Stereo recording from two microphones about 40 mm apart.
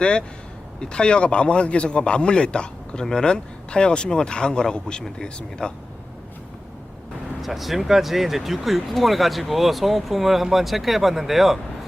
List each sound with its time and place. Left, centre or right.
0.0 s a man's voice: left
7.4 s speech: centre